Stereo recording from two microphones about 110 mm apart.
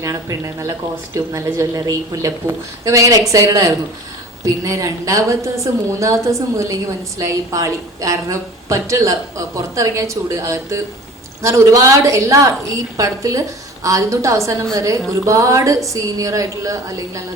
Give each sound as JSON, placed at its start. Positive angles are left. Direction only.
{"t": 0.0, "sound": "a woman's voice", "side_deg": -30}